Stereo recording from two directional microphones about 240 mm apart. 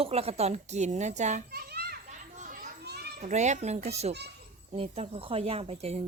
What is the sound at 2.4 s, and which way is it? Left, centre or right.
Children playing, right.